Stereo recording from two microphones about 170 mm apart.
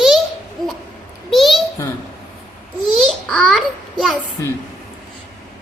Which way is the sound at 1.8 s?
20° left (ahead or behind).